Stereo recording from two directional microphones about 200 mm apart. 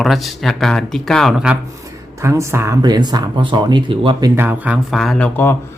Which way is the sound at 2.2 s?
15° right (ahead or behind).